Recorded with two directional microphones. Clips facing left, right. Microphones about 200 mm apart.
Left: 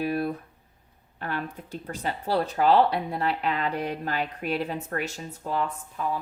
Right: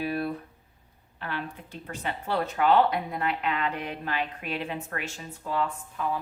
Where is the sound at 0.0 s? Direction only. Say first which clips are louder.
Left 3 dB; 45° left (ahead or behind).